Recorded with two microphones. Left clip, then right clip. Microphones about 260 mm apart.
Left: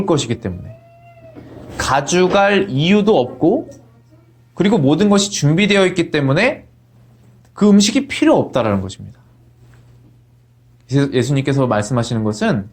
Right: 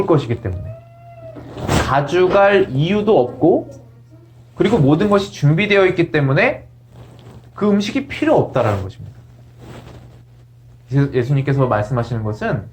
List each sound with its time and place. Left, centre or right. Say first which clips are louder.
0.1 s speech: right 1 dB; left
1.9 s speech: left 1 dB; left
7.5 s speech: left 4 dB; left
10.8 s speech: left 2 dB; left